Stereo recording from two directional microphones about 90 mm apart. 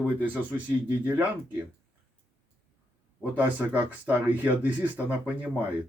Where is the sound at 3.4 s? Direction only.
20° right (ahead or behind).